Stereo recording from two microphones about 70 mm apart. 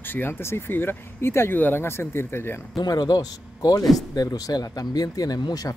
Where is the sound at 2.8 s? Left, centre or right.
Left.